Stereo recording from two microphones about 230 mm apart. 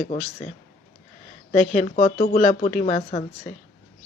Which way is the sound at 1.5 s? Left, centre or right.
Left.